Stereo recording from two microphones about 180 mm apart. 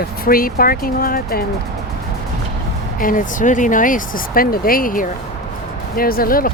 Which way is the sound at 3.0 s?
50° left (ahead or behind).